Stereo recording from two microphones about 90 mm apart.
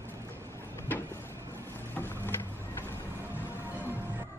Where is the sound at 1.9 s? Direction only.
25° left (ahead or behind).